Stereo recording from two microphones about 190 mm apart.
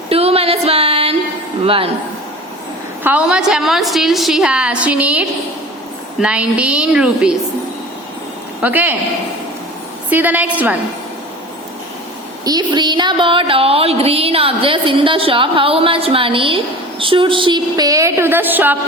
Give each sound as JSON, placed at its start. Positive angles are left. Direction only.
{"t": 0.1, "sound": "a sound", "side_deg": -30}
{"t": 1.6, "sound": "music", "side_deg": -30}
{"t": 3.0, "sound": "a woman's voice", "side_deg": -5}
{"t": 8.6, "sound": "a woman's voice", "side_deg": -10}
{"t": 10.1, "sound": "a woman's voice", "side_deg": -10}
{"t": 12.5, "sound": "music", "side_deg": -20}